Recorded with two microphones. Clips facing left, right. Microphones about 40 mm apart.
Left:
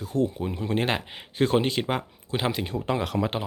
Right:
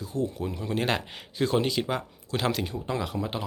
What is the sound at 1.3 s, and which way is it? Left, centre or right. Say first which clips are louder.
Speech: left 2 dB; left.